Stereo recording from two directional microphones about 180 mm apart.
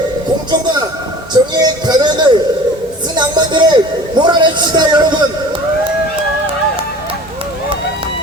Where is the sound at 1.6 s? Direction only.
25° right (ahead or behind).